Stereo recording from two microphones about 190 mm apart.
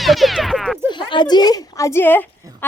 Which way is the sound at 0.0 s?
Centre (ahead or behind).